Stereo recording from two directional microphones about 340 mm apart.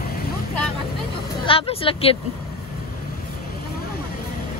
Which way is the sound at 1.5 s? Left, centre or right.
Centre.